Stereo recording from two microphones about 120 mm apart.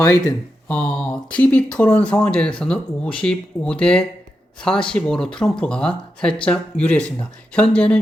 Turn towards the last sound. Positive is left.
turn(degrees=10)  # may be behind; listen again after turning